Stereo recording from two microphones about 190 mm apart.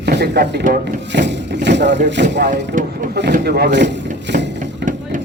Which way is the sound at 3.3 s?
60° right (ahead or behind).